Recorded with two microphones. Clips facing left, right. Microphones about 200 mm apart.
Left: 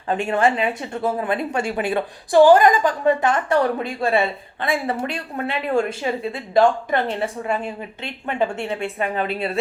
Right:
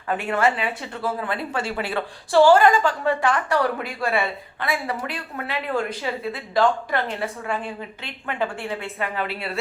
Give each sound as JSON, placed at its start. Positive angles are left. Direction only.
{"t": 0.1, "sound": "a woman's voice", "side_deg": 30}